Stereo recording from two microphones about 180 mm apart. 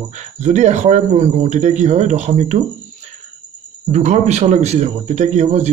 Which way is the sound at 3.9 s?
40° right (ahead or behind).